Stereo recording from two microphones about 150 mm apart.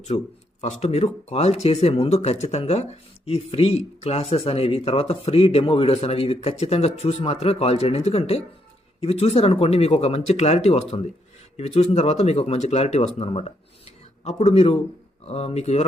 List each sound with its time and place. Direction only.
0.1 s a man's voice: 35° left (ahead or behind)
0.6 s speech: 45° left (ahead or behind)